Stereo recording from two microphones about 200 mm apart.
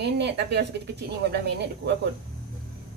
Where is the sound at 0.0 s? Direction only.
60° right (ahead or behind).